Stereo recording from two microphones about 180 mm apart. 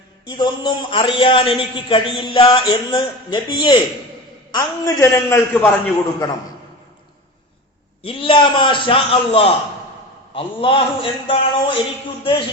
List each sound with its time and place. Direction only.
0.3 s a man's voice: 25° left (ahead or behind)
4.5 s a man's voice: 15° left (ahead or behind)
8.0 s a man's voice: 30° left (ahead or behind)